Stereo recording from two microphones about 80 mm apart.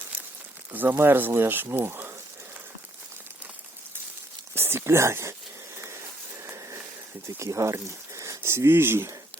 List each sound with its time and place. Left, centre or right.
0.7 s speech: right
4.5 s speech: right
5.7 s a sound: right
7.3 s speech: right